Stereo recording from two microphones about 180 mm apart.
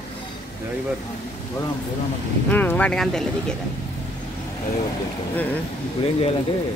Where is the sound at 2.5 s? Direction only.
10° left (ahead or behind).